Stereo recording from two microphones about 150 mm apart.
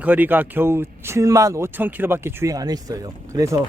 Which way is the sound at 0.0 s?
10° right (ahead or behind).